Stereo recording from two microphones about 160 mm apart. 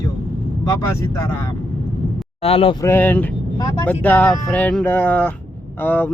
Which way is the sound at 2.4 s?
35° left (ahead or behind).